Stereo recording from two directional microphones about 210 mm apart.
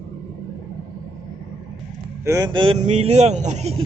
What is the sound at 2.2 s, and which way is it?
A man's voice, 15° right (ahead or behind).